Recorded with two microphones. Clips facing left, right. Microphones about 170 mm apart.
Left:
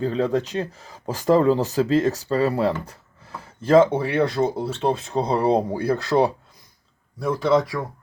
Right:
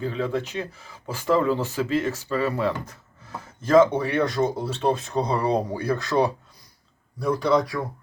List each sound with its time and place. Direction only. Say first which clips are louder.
0.0 s speech: left 5 dB; 40° left (ahead or behind); by 7.6 s 25° left (ahead or behind)